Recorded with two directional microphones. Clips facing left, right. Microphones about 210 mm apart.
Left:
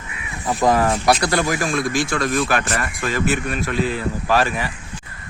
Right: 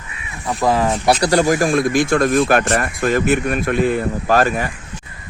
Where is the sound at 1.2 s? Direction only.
40° right (ahead or behind).